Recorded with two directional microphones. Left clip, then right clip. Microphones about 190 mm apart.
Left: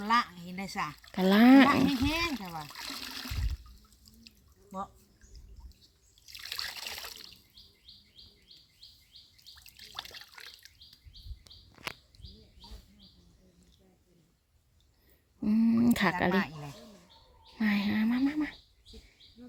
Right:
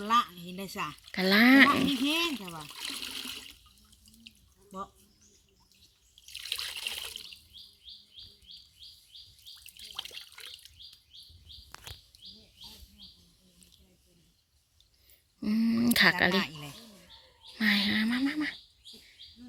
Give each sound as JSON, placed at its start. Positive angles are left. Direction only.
{"t": 0.1, "sound": "speech", "side_deg": 15}
{"t": 6.6, "sound": "water", "side_deg": 20}
{"t": 15.4, "sound": "a sound", "side_deg": 10}